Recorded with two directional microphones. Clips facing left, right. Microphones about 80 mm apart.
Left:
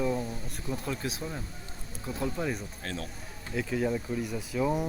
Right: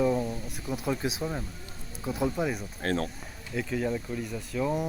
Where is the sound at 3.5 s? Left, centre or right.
Centre.